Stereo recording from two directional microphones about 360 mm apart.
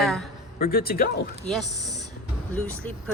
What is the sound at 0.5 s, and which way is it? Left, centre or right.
Speech, left.